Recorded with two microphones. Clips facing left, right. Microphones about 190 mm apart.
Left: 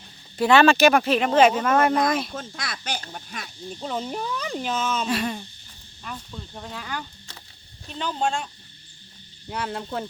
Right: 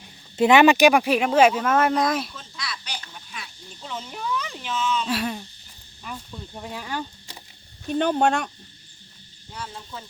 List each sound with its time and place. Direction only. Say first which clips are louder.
0.3 s speech: right 2 dB; 20° right (ahead or behind); by 2.3 s 5° right (ahead or behind)
2.3 s speech: left 4 dB; 50° left (ahead or behind)
5.0 s speech: left 1 dB; 5° right (ahead or behind)
6.8 s speech: right 3 dB; 25° right (ahead or behind)
7.9 s speech: right 6 dB; 55° right (ahead or behind)
9.5 s speech: left 8 dB; 65° left (ahead or behind)